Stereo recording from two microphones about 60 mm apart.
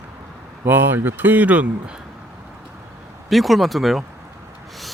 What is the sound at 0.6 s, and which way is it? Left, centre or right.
Speech, right.